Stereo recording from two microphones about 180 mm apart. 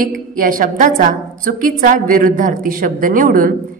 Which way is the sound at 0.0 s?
50° right (ahead or behind).